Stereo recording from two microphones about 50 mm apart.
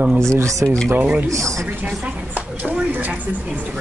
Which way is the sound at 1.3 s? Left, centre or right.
Right.